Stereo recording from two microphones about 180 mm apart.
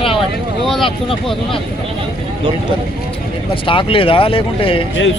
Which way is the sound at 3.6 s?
30° left (ahead or behind).